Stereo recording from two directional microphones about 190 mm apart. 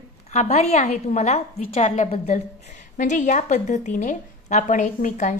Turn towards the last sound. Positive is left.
turn(degrees=40)  # may be behind; listen again after turning